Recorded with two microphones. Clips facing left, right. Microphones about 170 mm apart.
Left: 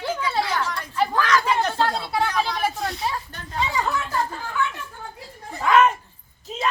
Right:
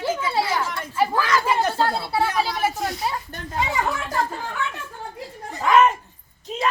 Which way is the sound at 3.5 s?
50° right (ahead or behind).